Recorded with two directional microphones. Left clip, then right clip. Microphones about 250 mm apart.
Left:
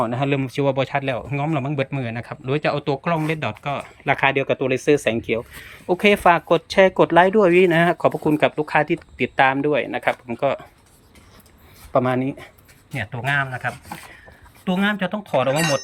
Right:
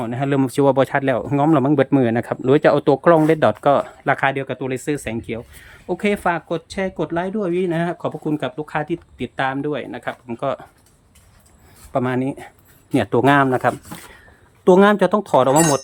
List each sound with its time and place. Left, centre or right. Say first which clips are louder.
0.0 s speech: right 1 dB; centre
11.9 s speech: left 1 dB; centre
12.9 s speech: right 8 dB; right